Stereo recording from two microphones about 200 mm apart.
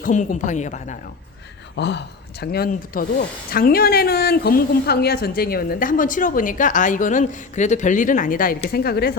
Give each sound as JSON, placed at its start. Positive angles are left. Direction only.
{"t": 0.0, "sound": "a woman's voice", "side_deg": 40}
{"t": 1.7, "sound": "speech", "side_deg": 60}